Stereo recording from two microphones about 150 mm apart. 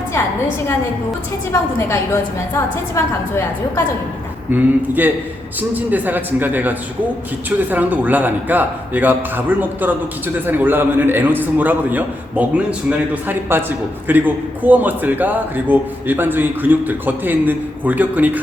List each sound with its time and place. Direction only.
2.6 s a woman's voice: 20° left (ahead or behind)
4.5 s a man's voice: 10° right (ahead or behind)